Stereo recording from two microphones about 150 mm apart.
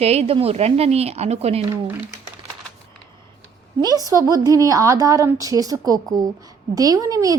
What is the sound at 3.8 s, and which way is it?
A woman's voice, 25° right (ahead or behind).